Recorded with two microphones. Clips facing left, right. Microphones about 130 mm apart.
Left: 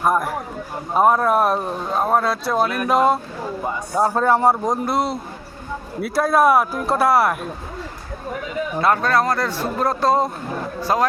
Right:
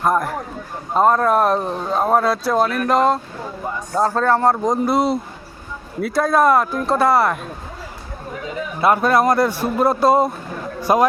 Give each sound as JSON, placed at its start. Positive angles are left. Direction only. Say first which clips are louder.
{"t": 0.0, "sound": "speech", "louder": "right 1 dB", "side_deg": 5}
{"t": 8.8, "sound": "a man's voice", "louder": "right 3 dB", "side_deg": -10}